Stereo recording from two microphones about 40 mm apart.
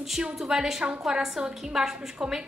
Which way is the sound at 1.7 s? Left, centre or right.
Centre.